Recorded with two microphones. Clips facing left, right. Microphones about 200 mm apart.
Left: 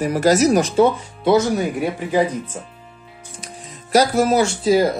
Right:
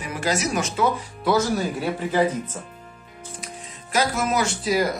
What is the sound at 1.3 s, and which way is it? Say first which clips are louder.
Speech: left 5 dB; 20° left (ahead or behind).